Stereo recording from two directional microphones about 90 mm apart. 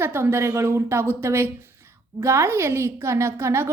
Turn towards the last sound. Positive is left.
turn(degrees=-30)  # may be behind; listen again after turning